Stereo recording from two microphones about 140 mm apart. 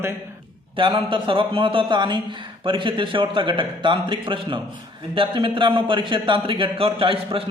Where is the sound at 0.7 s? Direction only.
35° right (ahead or behind).